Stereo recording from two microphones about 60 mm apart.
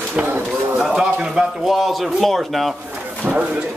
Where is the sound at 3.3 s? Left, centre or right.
Centre.